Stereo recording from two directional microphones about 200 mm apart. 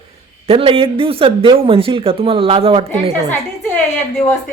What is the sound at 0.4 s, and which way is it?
Speech, 30° right (ahead or behind).